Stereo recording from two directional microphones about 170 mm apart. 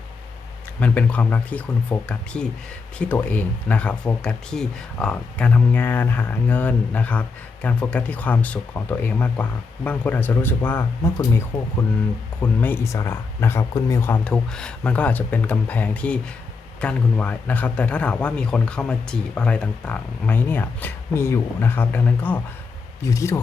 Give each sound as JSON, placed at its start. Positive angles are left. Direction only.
{"t": 0.8, "sound": "speech", "side_deg": 10}